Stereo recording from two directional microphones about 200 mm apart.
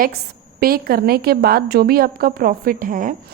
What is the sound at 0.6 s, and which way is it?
A woman's voice, 50° right (ahead or behind).